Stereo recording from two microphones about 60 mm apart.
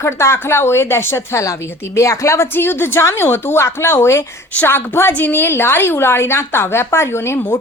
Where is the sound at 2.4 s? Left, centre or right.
Left.